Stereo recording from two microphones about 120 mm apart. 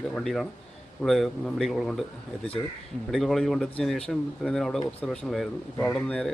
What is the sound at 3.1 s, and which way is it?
Speech, centre (ahead or behind).